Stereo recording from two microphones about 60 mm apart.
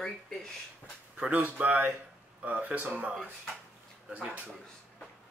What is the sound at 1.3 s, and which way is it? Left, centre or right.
Speech, right.